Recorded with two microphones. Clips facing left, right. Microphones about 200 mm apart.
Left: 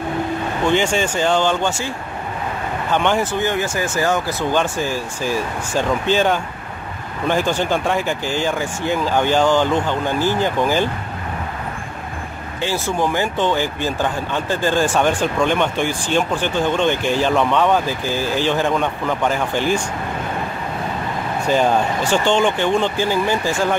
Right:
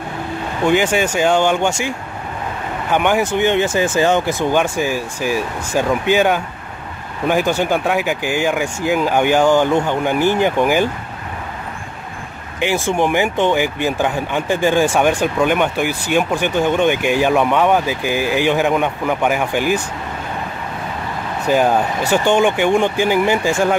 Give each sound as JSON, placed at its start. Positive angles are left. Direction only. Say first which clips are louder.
{"t": 0.7, "sound": "speech", "louder": "right 3 dB", "side_deg": -10}
{"t": 2.9, "sound": "speech", "louder": "right 3 dB", "side_deg": -10}
{"t": 12.9, "sound": "speech", "louder": "right 2 dB", "side_deg": -15}
{"t": 21.5, "sound": "speech", "louder": "right 2 dB", "side_deg": -10}